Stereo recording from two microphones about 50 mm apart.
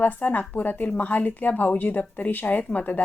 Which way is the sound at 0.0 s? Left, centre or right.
Left.